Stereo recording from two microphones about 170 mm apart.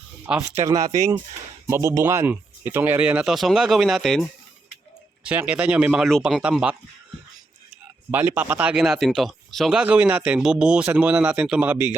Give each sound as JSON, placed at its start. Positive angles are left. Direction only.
{"t": 0.3, "sound": "speech", "side_deg": -5}
{"t": 0.6, "sound": "speech", "side_deg": -20}
{"t": 8.4, "sound": "speech", "side_deg": -10}